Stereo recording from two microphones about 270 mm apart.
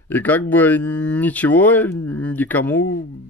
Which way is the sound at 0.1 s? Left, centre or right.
Centre.